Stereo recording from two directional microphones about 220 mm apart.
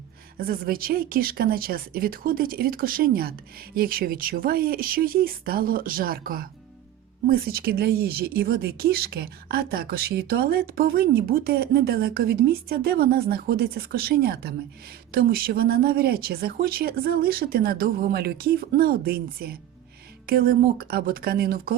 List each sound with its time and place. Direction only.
0.3 s a woman's voice: 40° right (ahead or behind)